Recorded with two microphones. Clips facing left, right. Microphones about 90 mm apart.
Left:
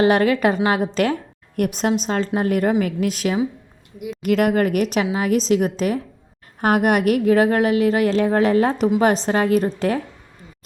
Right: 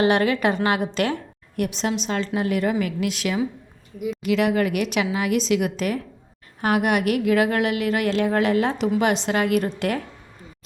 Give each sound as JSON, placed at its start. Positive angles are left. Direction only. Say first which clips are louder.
{"t": 0.0, "sound": "a woman's voice", "louder": "left 3 dB", "side_deg": 35}
{"t": 1.5, "sound": "a woman's voice", "louder": "left 4 dB", "side_deg": 50}
{"t": 6.6, "sound": "a woman's voice", "louder": "left 3 dB", "side_deg": 45}